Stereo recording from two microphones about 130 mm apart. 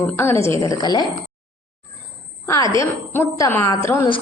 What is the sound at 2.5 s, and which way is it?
A woman's voice, 25° left (ahead or behind).